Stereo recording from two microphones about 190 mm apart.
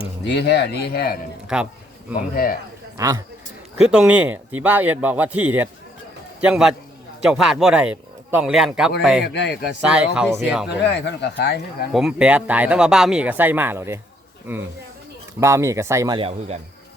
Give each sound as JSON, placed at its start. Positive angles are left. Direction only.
{"t": 0.3, "sound": "speech", "side_deg": 60}
{"t": 1.5, "sound": "a man's voice", "side_deg": -5}
{"t": 2.3, "sound": "a man's voice", "side_deg": 50}
{"t": 3.0, "sound": "speech", "side_deg": -20}
{"t": 3.8, "sound": "a man's voice", "side_deg": -5}
{"t": 9.2, "sound": "speech", "side_deg": 65}
{"t": 9.8, "sound": "a man's voice", "side_deg": -5}
{"t": 10.8, "sound": "speech", "side_deg": 65}
{"t": 11.9, "sound": "speech", "side_deg": -5}
{"t": 16.1, "sound": "speech", "side_deg": -30}